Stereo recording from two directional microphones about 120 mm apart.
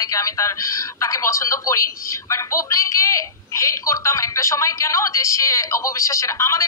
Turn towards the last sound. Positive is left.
turn(degrees=25)  # may be behind; listen again after turning